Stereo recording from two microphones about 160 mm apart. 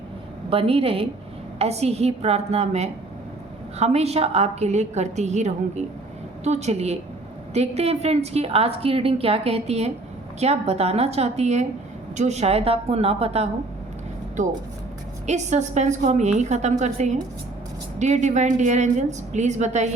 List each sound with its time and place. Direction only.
0.5 s a woman's voice: 35° right (ahead or behind)
14.4 s a woman's voice: 50° right (ahead or behind)